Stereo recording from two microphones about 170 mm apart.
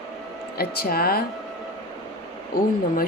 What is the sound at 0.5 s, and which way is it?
Speech, 65° left (ahead or behind).